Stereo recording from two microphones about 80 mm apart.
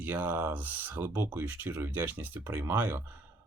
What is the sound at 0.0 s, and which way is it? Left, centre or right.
Speech, right.